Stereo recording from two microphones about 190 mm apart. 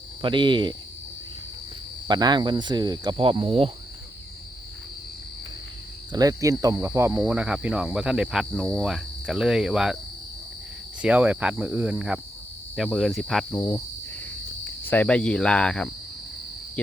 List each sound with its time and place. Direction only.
0.2 s speech: 25° right (ahead or behind)
2.0 s speech: 20° right (ahead or behind)
6.1 s speech: 20° right (ahead or behind); by 10.0 s 5° right (ahead or behind)
11.0 s speech: 5° right (ahead or behind)